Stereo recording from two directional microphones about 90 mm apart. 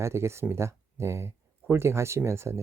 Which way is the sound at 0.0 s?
30° right (ahead or behind).